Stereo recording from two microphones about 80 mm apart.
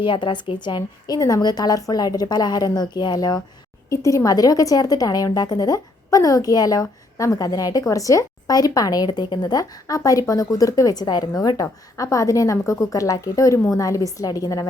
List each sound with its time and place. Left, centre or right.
0.0 s a woman's voice: left
3.8 s a woman's voice: left
11.0 s a woman's voice: left